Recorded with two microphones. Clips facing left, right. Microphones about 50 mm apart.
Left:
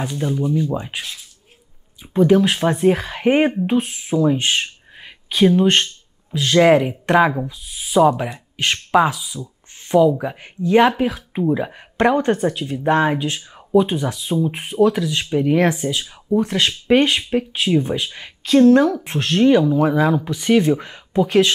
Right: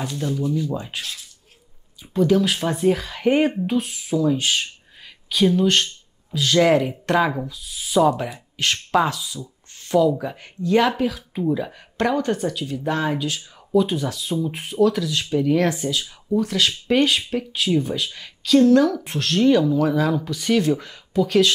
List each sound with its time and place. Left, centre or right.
0.0 s speech: left
2.1 s speech: left